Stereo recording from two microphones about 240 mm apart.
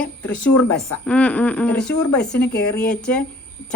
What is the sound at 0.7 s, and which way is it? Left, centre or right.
A woman's voice, centre.